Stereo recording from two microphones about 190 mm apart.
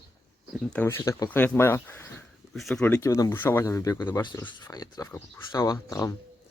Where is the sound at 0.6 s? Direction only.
10° left (ahead or behind).